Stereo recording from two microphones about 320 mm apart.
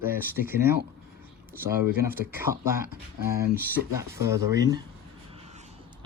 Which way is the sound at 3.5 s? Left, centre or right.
Centre.